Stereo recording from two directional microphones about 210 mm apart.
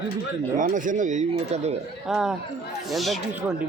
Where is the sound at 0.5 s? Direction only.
40° right (ahead or behind).